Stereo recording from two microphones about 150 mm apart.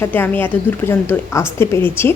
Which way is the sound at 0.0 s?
15° left (ahead or behind).